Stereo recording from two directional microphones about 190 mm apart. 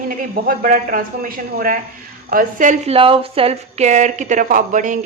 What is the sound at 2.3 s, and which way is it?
A woman's voice, 45° right (ahead or behind).